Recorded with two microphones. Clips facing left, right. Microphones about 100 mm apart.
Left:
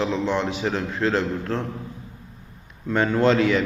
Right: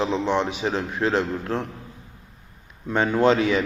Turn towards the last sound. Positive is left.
turn(degrees=-20)  # may be behind; listen again after turning